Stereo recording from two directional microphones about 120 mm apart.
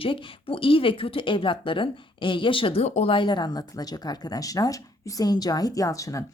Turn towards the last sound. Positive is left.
turn(degrees=25)  # may be behind; listen again after turning